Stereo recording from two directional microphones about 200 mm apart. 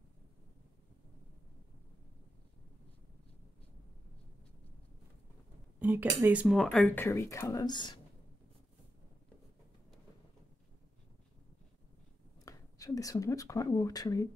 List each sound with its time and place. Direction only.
5.8 s speech: 10° right (ahead or behind); by 8.0 s 20° left (ahead or behind)
12.4 s speech: 15° left (ahead or behind)